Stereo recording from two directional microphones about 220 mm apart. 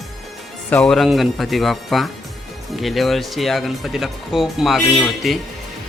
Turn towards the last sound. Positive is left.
turn(degrees=0)  # may be behind; listen again after turning